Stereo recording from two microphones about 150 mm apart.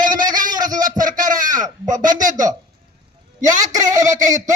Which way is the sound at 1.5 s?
25° right (ahead or behind).